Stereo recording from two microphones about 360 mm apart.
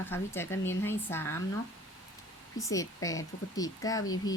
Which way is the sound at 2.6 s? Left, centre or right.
Centre.